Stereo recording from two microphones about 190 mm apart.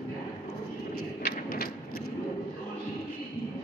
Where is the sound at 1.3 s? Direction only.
55° left (ahead or behind).